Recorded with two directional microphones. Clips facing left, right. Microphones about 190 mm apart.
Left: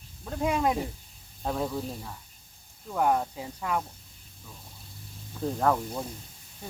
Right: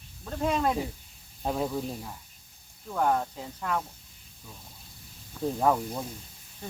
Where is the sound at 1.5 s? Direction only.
5° right (ahead or behind).